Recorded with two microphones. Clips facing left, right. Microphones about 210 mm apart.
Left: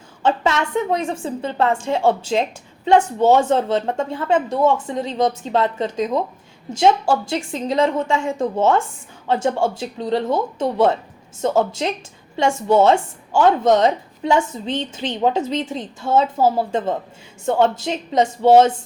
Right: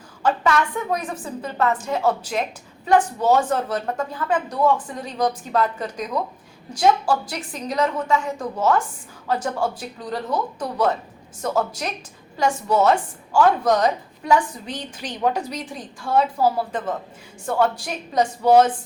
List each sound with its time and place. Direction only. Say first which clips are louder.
0.2 s a woman's voice: left 1 dB; 25° left (ahead or behind)